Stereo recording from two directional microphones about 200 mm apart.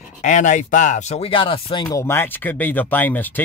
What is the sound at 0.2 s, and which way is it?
Speech, 40° left (ahead or behind).